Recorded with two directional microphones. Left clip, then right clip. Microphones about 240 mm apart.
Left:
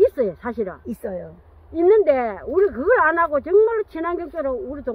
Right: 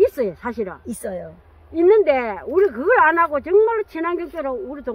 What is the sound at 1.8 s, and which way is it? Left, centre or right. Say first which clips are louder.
Speech: right 1 dB; centre.